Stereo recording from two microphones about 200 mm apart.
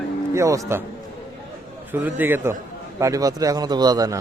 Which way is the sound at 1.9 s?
10° right (ahead or behind).